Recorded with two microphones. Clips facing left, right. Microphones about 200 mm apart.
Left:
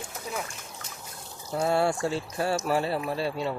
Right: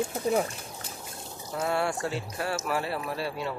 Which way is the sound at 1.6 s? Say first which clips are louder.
Left 4 dB; 30° left (ahead or behind).